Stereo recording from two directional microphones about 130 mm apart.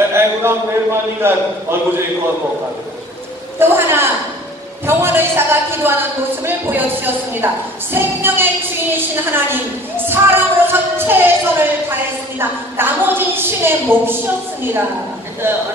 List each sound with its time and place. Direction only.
0.1 s a man's voice: 20° right (ahead or behind)
3.5 s a woman's voice: 20° right (ahead or behind)